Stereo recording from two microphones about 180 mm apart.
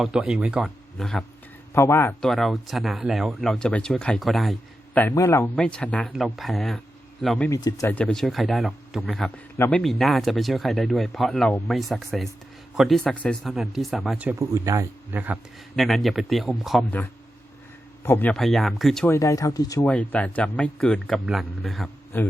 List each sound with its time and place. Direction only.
0.0 s speech: 5° right (ahead or behind)
1.7 s speech: 15° left (ahead or behind)
2.2 s speech: centre (ahead or behind)
4.9 s speech: 15° left (ahead or behind)
7.5 s speech: 15° left (ahead or behind); by 15.4 s 10° right (ahead or behind)
15.7 s speech: centre (ahead or behind)
18.0 s speech: 10° left (ahead or behind)
19.0 s speech: 15° left (ahead or behind)
19.9 s speech: 10° left (ahead or behind)
22.1 s speech: 10° left (ahead or behind)